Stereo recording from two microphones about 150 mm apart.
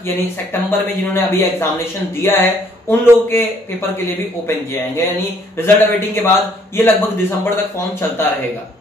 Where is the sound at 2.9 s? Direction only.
15° left (ahead or behind).